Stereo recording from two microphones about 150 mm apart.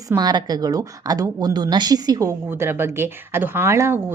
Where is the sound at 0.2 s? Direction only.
25° right (ahead or behind).